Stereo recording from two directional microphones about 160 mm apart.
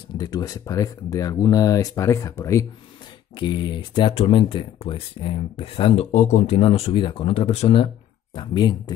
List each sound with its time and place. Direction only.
0.2 s speech: 25° left (ahead or behind)
3.3 s speech: 30° left (ahead or behind)
6.1 s speech: 45° left (ahead or behind); by 8.9 s 30° left (ahead or behind)